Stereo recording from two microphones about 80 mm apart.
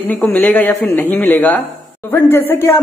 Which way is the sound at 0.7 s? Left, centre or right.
Left.